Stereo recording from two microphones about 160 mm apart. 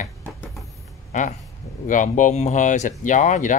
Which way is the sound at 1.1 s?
50° left (ahead or behind).